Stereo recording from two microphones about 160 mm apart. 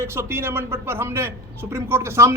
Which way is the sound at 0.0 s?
15° right (ahead or behind).